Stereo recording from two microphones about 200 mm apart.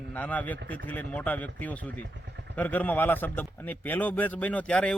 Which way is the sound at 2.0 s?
60° right (ahead or behind).